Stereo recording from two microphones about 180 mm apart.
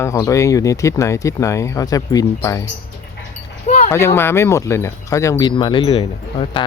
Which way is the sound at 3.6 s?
35° left (ahead or behind).